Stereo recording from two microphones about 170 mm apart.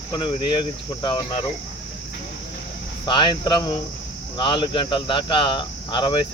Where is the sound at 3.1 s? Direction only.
30° left (ahead or behind).